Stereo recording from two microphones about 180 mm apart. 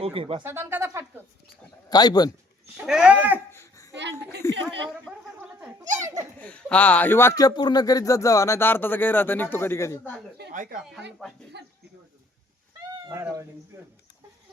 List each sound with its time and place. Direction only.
0.0 s speech: 30° right (ahead or behind)
0.4 s speech: 15° right (ahead or behind)
1.9 s speech: 20° left (ahead or behind)
2.8 s speech: 5° right (ahead or behind)
3.5 s a sound: 15° left (ahead or behind)
5.1 s a sound: 5° right (ahead or behind)
5.4 s goat: 10° right (ahead or behind)
5.8 s a child's voice: 20° right (ahead or behind)
6.4 s speech: 5° left (ahead or behind)
10.5 s speech: 45° right (ahead or behind)
11.2 s speech: centre (ahead or behind)
13.1 s speech: 15° right (ahead or behind)